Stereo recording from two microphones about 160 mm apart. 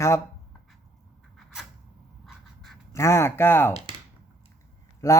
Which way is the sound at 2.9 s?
20° left (ahead or behind).